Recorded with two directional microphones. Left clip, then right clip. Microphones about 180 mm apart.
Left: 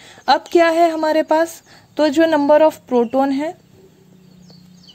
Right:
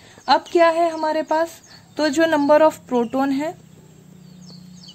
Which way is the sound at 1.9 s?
15° left (ahead or behind).